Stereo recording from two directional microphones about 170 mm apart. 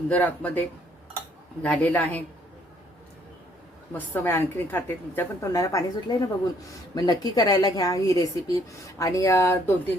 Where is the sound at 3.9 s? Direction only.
10° left (ahead or behind).